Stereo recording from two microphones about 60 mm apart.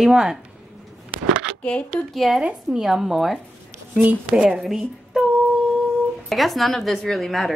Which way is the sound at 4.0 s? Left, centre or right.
Right.